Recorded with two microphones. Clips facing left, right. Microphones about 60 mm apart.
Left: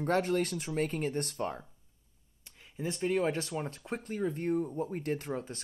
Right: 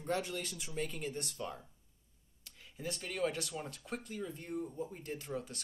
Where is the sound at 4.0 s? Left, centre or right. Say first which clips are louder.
Left 9 dB; left.